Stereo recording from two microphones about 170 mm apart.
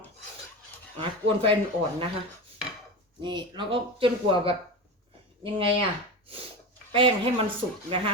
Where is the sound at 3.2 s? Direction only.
25° right (ahead or behind).